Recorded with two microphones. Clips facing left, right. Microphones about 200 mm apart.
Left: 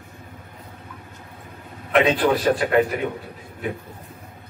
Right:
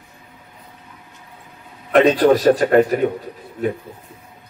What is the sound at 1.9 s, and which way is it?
A man's voice, 40° right (ahead or behind).